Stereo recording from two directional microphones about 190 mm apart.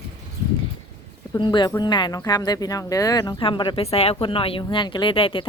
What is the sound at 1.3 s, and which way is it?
Speech, 20° left (ahead or behind).